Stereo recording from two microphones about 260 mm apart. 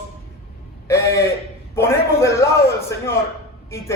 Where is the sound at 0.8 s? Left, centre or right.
Centre.